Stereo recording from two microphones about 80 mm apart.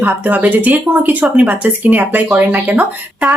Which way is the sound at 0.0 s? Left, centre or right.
Right.